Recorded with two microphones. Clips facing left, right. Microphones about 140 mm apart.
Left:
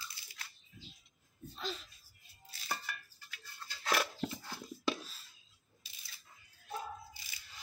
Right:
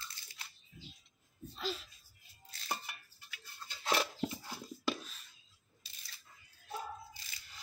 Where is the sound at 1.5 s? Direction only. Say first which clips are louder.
Right 2 dB; 5° right (ahead or behind).